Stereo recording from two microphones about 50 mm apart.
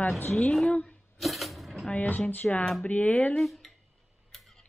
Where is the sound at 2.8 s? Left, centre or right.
Left.